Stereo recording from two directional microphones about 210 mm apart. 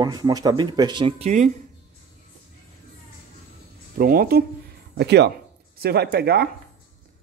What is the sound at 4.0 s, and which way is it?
Speech, 45° right (ahead or behind).